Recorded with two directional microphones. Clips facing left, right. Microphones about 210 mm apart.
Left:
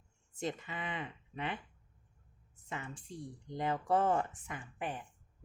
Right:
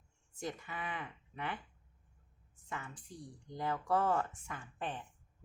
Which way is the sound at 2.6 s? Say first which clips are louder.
Left 2 dB; 20° left (ahead or behind).